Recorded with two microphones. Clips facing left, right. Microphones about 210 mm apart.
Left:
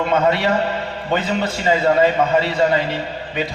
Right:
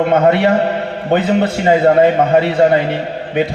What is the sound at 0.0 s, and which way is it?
A man's voice, 55° right (ahead or behind).